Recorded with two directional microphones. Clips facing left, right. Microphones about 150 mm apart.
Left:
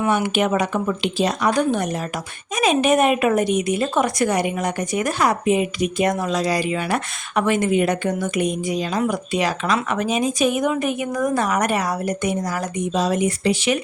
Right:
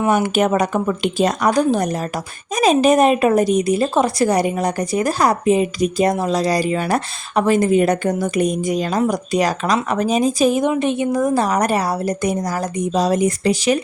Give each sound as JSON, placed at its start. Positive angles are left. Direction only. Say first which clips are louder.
{"t": 0.1, "sound": "a woman's voice", "louder": "right 4 dB", "side_deg": -40}